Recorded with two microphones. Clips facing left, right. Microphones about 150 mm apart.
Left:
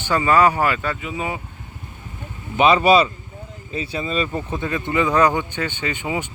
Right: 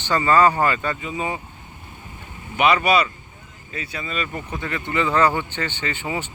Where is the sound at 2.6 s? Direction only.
25° left (ahead or behind).